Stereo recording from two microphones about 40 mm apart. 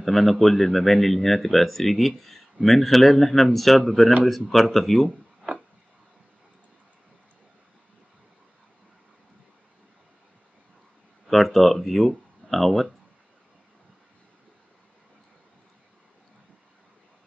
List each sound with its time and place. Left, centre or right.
0.0 s speech: centre
5.5 s a sound: right
11.2 s speech: centre